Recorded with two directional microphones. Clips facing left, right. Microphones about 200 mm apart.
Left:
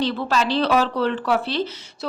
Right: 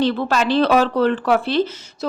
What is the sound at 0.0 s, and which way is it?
Speech, 55° right (ahead or behind).